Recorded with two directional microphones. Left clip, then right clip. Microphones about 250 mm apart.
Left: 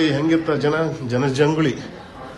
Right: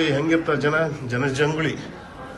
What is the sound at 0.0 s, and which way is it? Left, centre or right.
A man's voice, centre.